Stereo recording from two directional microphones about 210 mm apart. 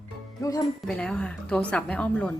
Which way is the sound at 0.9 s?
5° left (ahead or behind).